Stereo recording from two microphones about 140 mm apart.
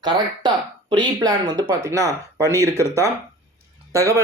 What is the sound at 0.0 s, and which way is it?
Speech, 30° right (ahead or behind).